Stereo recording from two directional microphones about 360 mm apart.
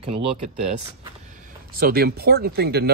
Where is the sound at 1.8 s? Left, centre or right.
Right.